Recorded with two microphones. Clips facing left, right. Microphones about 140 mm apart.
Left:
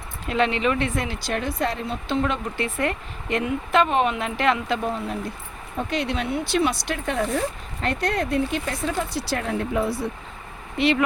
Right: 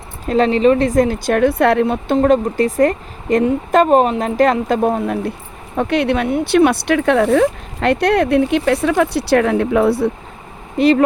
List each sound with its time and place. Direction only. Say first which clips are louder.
0.3 s speech: right 9 dB; 35° right (ahead or behind); by 2.1 s 60° right (ahead or behind)
2.1 s a woman's voice: right 11 dB; 40° right (ahead or behind); by 10.1 s 70° right (ahead or behind)
10.8 s a woman's voice: right 8 dB; 40° right (ahead or behind)